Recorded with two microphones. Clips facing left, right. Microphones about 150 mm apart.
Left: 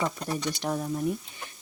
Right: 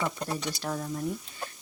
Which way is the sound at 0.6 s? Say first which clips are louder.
Left 3 dB; 15° left (ahead or behind).